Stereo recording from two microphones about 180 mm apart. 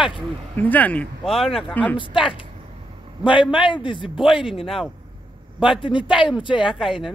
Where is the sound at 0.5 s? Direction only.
10° left (ahead or behind).